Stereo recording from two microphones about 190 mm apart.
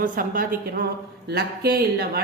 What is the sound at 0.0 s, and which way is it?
A woman's voice, 45° right (ahead or behind).